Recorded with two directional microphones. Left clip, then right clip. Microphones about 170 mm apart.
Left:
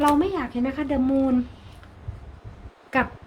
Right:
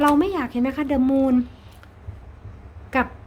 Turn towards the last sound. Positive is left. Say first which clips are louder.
# right 1 dB
turn(degrees=-30)  # may be behind; listen again after turning